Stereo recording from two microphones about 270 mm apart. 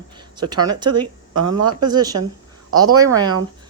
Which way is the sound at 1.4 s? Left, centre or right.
Right.